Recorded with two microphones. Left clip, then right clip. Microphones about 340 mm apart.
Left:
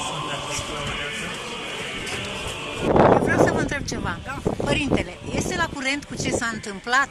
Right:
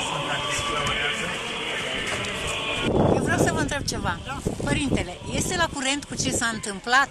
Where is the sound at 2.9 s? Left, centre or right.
Left.